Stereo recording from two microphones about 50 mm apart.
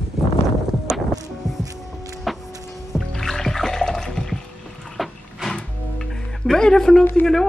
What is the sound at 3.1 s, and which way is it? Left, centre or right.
Music, centre.